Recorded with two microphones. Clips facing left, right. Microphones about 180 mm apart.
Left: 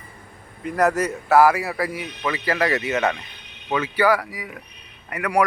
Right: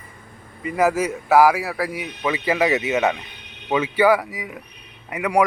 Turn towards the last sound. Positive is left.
turn(degrees=-20)  # may be behind; listen again after turning